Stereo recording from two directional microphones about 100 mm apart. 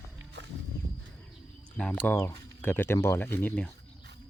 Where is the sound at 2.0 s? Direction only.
25° left (ahead or behind).